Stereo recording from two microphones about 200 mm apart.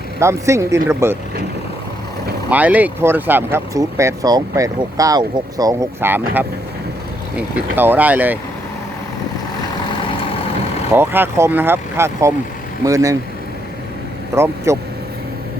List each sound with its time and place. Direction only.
0.2 s speech: 15° right (ahead or behind)
2.5 s speech: 10° right (ahead or behind)
10.9 s speech: 10° right (ahead or behind)
14.3 s speech: 15° right (ahead or behind)